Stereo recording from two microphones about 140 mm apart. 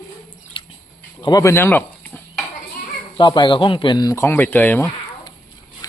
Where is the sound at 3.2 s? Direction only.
35° left (ahead or behind).